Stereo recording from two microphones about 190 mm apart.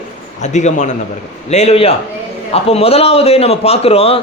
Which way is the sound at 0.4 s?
40° left (ahead or behind).